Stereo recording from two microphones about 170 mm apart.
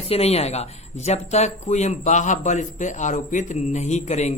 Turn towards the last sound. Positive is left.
turn(degrees=40)  # may be behind; listen again after turning